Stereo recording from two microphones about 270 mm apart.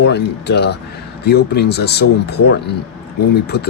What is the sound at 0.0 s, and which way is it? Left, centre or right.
Speech, left.